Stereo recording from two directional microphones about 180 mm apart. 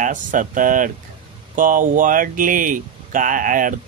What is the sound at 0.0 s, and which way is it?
Speech, 45° right (ahead or behind).